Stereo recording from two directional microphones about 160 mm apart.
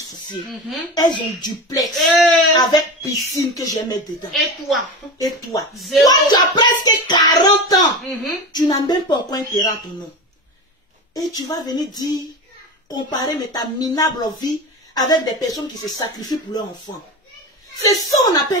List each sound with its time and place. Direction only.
0.9 s speech: 25° left (ahead or behind)
2.0 s speech: centre (ahead or behind)
2.5 s speech: 25° left (ahead or behind)
4.3 s speech: centre (ahead or behind)
5.8 s speech: centre (ahead or behind)
6.0 s speech: 25° left (ahead or behind)
11.1 s speech: 25° left (ahead or behind)